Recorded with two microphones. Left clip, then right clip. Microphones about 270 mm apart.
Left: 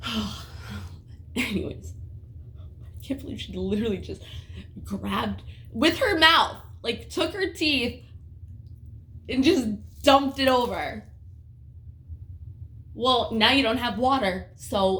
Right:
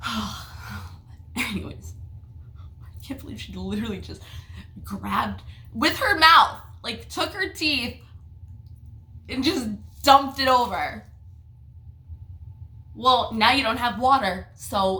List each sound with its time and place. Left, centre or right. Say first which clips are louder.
0.0 s gasp: right 2 dB; centre
1.3 s throat clearing: left 1 dB; centre
3.0 s speech: left 3 dB; centre
9.2 s speech: left 3 dB; centre
13.0 s speech: right 2 dB; centre